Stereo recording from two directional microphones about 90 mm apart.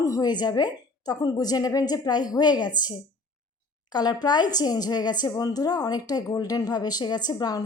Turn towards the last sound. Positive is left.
turn(degrees=45)  # may be behind; listen again after turning